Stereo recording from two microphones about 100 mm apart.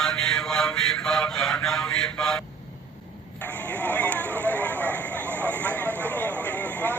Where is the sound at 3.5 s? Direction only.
15° left (ahead or behind).